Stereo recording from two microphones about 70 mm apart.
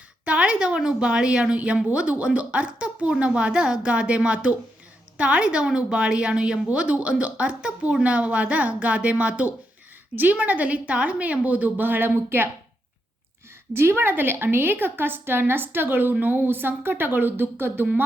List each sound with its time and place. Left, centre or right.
0.3 s a woman's voice: centre; by 12.5 s right
13.7 s a woman's voice: right